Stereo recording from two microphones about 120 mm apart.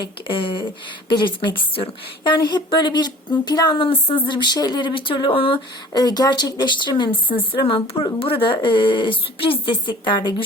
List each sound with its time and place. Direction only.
0.0 s speech: 45° left (ahead or behind)